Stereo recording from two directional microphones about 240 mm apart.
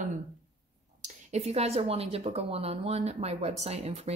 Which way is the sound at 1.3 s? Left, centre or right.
Right.